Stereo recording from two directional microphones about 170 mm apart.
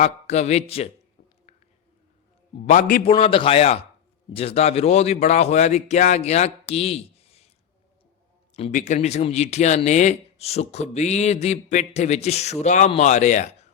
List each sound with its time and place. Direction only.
0.0 s speech: 40° left (ahead or behind)
2.6 s speech: 50° left (ahead or behind)
3.1 s speech: 30° left (ahead or behind)
8.5 s speech: 45° left (ahead or behind)